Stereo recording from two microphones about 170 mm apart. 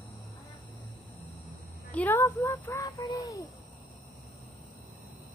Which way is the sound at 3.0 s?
25° left (ahead or behind).